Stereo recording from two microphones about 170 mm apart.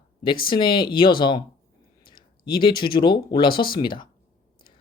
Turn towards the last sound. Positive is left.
turn(degrees=25)  # may be behind; listen again after turning